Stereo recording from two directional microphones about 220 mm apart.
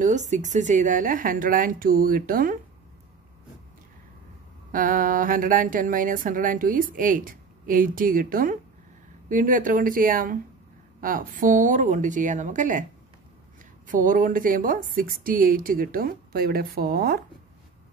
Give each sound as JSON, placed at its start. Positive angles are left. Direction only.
{"t": 0.0, "sound": "speech", "side_deg": -35}
{"t": 4.7, "sound": "speech", "side_deg": -40}
{"t": 13.8, "sound": "speech", "side_deg": -35}